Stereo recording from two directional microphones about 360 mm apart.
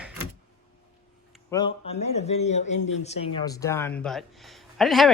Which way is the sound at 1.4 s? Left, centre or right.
Centre.